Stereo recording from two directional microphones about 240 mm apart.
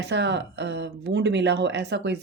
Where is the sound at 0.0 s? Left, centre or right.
Right.